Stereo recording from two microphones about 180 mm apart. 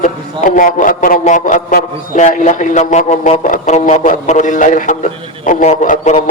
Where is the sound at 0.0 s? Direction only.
45° left (ahead or behind).